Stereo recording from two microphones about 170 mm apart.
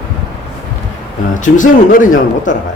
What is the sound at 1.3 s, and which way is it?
Speech, 50° left (ahead or behind).